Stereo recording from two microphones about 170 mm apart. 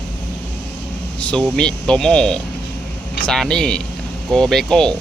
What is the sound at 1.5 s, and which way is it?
Speech, 5° left (ahead or behind).